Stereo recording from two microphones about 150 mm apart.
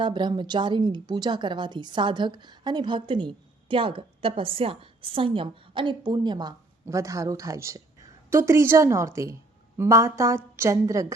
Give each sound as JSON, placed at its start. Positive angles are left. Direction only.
{"t": 0.0, "sound": "a woman's voice", "side_deg": -30}